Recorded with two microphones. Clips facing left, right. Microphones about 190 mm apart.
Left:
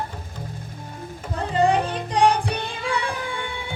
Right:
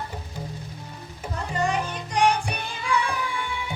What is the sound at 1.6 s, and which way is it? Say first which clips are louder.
Music: left 7 dB; 30° left (ahead or behind).